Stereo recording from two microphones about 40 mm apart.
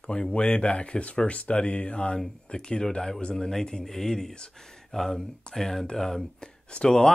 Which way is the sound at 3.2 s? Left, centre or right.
Left.